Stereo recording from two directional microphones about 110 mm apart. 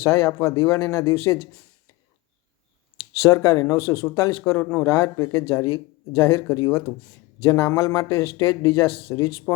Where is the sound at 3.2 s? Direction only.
30° left (ahead or behind).